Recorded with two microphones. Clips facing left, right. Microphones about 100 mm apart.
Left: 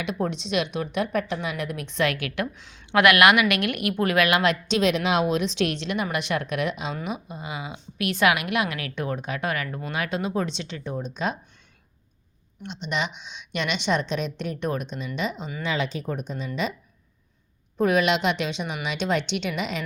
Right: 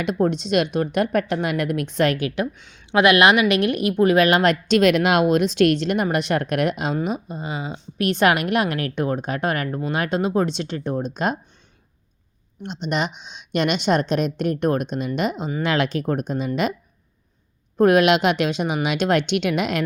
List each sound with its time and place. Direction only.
0.0 s speech: 40° right (ahead or behind)
2.6 s speech: centre (ahead or behind)
2.9 s a woman's voice: 20° right (ahead or behind)
4.7 s speech: 55° right (ahead or behind)
6.9 s a woman's voice: 35° right (ahead or behind); by 11.3 s 50° right (ahead or behind)
12.6 s speech: 40° right (ahead or behind)
15.6 s speech: 65° right (ahead or behind)
17.7 s speech: 60° right (ahead or behind)